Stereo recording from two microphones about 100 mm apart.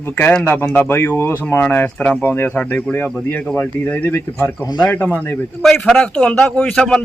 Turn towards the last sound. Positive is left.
turn(degrees=5)  # may be behind; listen again after turning